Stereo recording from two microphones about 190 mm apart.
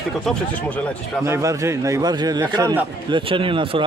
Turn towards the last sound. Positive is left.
turn(degrees=-25)  # may be behind; listen again after turning